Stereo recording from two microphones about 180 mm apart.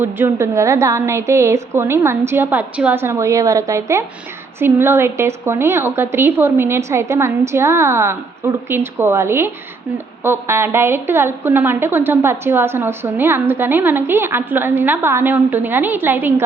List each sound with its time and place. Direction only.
0.0 s a woman's voice: 15° right (ahead or behind)